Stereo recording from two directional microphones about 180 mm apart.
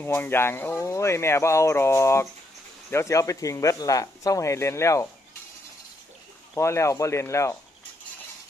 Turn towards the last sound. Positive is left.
turn(degrees=15)  # may be behind; listen again after turning